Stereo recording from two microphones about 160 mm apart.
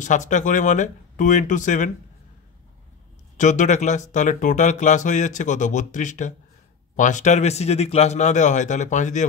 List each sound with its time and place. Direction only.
0.0 s speech: 50° left (ahead or behind)
3.3 s speech: 50° left (ahead or behind)